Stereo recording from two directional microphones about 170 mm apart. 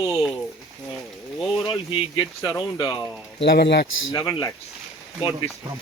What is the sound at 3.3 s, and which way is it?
Speech, 80° left.